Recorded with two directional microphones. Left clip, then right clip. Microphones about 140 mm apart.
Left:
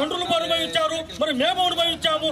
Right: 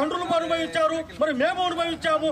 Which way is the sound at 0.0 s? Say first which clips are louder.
Left 1 dB; 20° left (ahead or behind).